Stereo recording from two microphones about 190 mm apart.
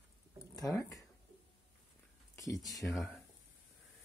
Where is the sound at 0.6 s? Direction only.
15° left (ahead or behind).